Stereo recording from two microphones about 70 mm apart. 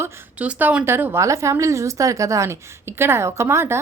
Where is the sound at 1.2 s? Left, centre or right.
Right.